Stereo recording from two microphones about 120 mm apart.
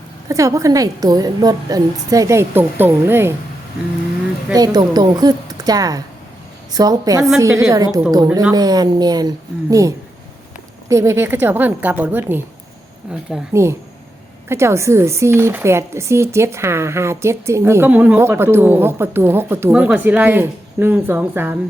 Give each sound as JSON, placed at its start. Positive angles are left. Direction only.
{"t": 0.3, "sound": "speech", "side_deg": -25}
{"t": 4.5, "sound": "a woman's voice", "side_deg": -35}
{"t": 13.5, "sound": "speech", "side_deg": -25}